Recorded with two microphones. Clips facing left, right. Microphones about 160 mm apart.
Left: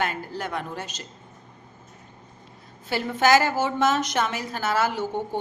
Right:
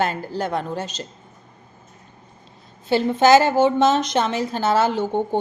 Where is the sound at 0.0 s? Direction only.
30° right (ahead or behind).